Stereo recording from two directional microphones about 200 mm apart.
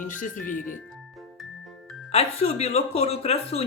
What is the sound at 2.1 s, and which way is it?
Speech, 30° left (ahead or behind).